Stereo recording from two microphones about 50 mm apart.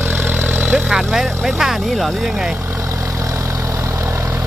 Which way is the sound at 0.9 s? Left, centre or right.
Centre.